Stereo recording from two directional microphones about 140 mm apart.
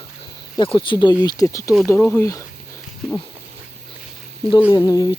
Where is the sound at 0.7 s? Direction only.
35° left (ahead or behind).